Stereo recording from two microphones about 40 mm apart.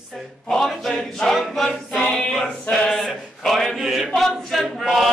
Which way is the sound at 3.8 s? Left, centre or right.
Centre.